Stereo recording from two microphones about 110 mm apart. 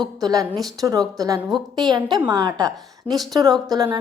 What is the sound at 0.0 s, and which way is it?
A woman's voice, 35° right (ahead or behind).